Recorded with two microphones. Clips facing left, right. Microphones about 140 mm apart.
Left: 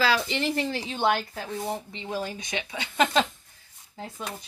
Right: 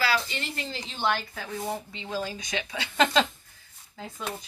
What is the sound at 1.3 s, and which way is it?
Speech, 25° left (ahead or behind).